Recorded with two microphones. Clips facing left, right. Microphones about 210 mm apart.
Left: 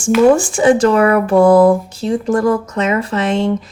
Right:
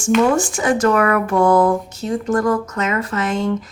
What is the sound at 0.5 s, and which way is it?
A woman's voice, 30° left (ahead or behind).